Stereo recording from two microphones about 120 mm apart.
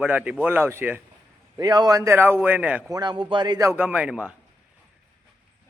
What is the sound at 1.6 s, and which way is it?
A man's voice, 35° right (ahead or behind).